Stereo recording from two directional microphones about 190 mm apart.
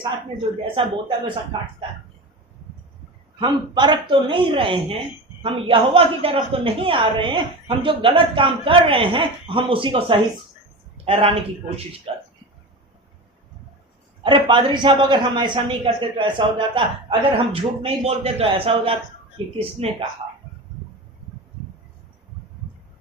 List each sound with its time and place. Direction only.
0.8 s a man's voice: 25° right (ahead or behind)
3.4 s a man's voice: 25° right (ahead or behind)
14.3 s a man's voice: 25° right (ahead or behind)